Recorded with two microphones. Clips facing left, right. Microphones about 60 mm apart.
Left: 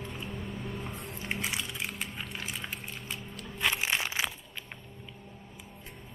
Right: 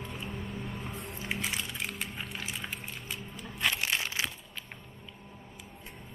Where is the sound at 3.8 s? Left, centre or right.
Centre.